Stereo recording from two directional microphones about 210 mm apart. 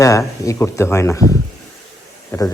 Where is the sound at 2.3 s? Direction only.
10° left (ahead or behind).